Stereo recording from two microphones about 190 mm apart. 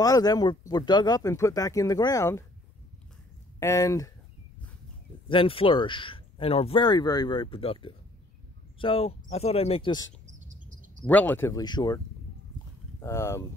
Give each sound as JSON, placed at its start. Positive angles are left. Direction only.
{"t": 0.0, "sound": "speech", "side_deg": 20}
{"t": 3.5, "sound": "speech", "side_deg": 15}
{"t": 5.3, "sound": "speech", "side_deg": 30}
{"t": 11.1, "sound": "speech", "side_deg": 10}
{"t": 13.0, "sound": "speech", "side_deg": 15}